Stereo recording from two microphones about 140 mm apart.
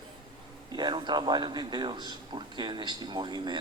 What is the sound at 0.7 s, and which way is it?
A man's voice, 30° right (ahead or behind).